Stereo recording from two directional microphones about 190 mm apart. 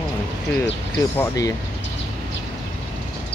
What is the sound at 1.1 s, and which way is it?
Speech, 15° left (ahead or behind).